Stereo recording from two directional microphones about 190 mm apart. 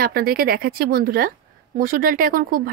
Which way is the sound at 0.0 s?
50° right (ahead or behind).